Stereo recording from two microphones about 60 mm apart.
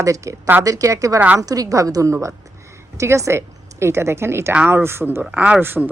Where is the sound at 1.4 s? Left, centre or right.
Right.